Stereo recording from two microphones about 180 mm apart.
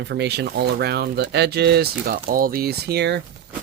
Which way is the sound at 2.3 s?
55° right (ahead or behind).